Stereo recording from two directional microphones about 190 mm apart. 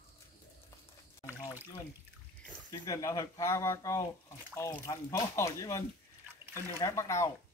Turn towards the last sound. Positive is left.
turn(degrees=15)  # may be behind; listen again after turning